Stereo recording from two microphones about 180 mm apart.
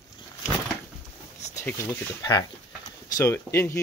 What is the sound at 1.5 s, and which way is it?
Speech, 15° left (ahead or behind).